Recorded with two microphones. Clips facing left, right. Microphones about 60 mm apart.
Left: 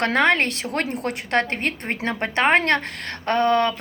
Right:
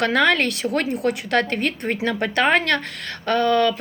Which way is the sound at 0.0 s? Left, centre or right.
Left.